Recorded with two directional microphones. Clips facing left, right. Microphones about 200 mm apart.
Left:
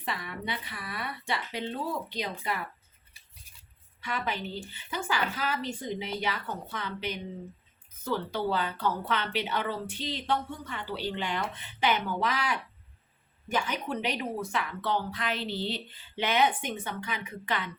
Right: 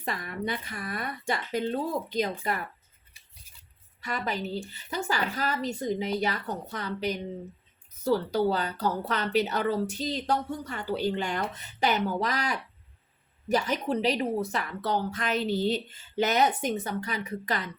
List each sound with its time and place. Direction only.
0.0 s speech: 45° right (ahead or behind)
4.0 s speech: 40° right (ahead or behind)